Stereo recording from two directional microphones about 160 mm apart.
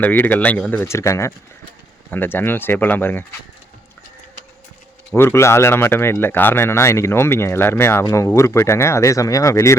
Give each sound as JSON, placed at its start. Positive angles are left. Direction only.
{"t": 0.0, "sound": "speech", "side_deg": 10}
{"t": 5.1, "sound": "speech", "side_deg": 15}